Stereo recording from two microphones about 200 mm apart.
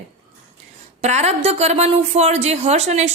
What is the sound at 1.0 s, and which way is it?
A woman's voice, 35° right (ahead or behind).